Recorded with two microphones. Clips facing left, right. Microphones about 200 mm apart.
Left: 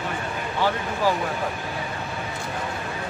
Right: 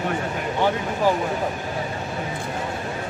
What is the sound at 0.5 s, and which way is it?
Speech, 20° right (ahead or behind).